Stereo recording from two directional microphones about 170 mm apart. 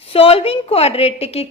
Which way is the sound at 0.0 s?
35° left (ahead or behind).